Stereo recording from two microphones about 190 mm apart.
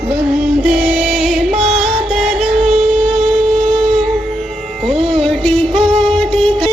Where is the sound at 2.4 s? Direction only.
30° right (ahead or behind).